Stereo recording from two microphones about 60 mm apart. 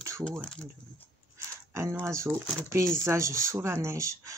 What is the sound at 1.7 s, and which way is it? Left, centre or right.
Speech, right.